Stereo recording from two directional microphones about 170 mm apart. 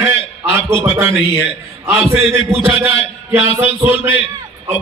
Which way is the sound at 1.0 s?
15° right (ahead or behind).